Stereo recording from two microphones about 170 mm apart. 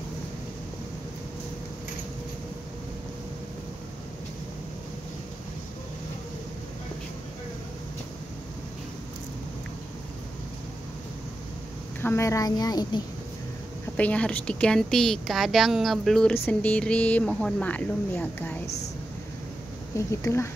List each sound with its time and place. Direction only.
12.0 s a woman's voice: 15° left (ahead or behind)
13.9 s speech: 5° left (ahead or behind)
20.1 s speech: 15° left (ahead or behind)